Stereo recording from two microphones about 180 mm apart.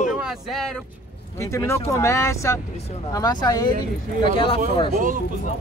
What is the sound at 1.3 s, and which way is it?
Speech, 15° left (ahead or behind).